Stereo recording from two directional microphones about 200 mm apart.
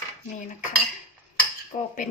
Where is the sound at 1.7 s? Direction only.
40° left (ahead or behind).